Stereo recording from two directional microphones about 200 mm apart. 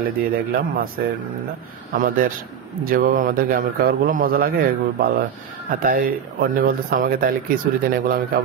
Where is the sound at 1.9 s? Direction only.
45° right (ahead or behind).